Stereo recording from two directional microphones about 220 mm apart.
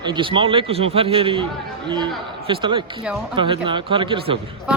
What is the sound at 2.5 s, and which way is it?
Speech, 20° right (ahead or behind).